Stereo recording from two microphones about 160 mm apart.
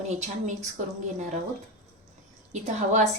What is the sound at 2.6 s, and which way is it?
Speech, 45° right (ahead or behind).